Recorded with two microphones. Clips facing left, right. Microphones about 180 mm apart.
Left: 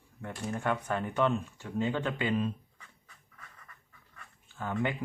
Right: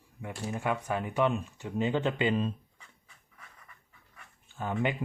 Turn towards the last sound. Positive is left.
turn(degrees=-20)  # may be behind; listen again after turning